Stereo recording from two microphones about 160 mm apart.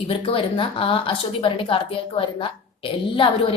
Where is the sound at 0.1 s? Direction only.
35° left (ahead or behind).